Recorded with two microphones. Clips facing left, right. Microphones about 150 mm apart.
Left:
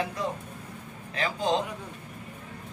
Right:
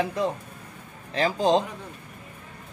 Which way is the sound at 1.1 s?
30° right (ahead or behind).